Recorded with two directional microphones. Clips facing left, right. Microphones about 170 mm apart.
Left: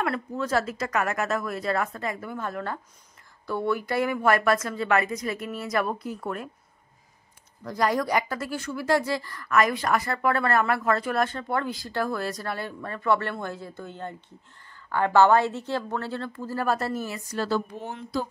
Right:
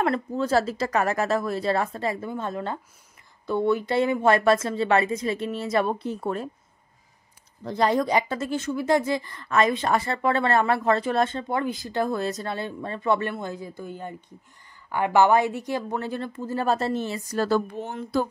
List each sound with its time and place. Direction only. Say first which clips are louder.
0.0 s speech: right 4 dB; 30° right (ahead or behind)
7.6 s speech: right 3 dB; 25° right (ahead or behind)
17.3 s speech: right 4 dB; 45° right (ahead or behind)